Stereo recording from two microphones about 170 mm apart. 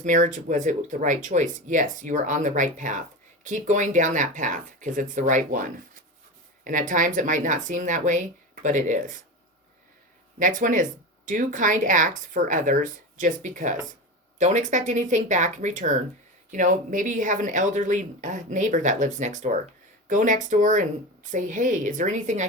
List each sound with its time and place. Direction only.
0.0 s speech: 50° right (ahead or behind)
10.3 s speech: 50° right (ahead or behind)